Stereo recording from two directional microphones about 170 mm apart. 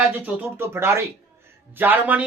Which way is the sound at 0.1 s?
10° right (ahead or behind).